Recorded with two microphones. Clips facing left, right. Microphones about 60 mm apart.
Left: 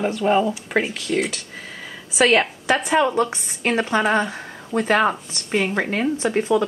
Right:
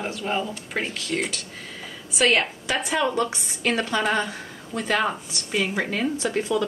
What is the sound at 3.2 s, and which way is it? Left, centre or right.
A woman's voice, left.